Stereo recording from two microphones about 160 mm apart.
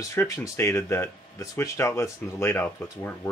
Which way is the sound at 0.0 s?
15° left (ahead or behind).